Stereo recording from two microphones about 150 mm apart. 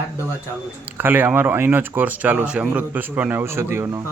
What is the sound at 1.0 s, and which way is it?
Speech, 15° right (ahead or behind).